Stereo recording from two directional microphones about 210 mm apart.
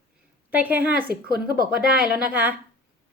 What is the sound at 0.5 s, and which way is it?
Speech, 10° right (ahead or behind).